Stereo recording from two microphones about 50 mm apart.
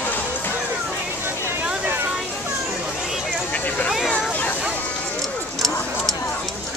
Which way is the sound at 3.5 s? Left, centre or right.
Left.